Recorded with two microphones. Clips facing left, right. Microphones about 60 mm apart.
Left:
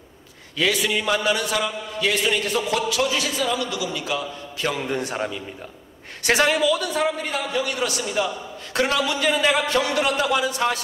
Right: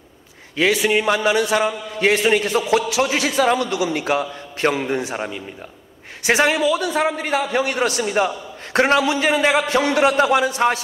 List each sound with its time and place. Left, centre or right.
0.6 s a man's voice: right
6.4 s a man's voice: right